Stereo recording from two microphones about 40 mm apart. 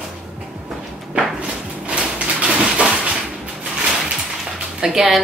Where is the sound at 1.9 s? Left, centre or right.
Right.